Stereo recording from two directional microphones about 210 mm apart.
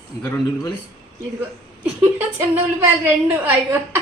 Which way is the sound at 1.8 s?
10° right (ahead or behind).